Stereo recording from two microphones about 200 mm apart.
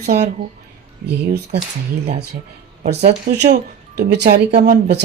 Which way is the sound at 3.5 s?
55° right (ahead or behind).